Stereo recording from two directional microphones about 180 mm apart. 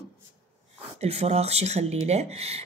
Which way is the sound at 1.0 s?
35° right (ahead or behind).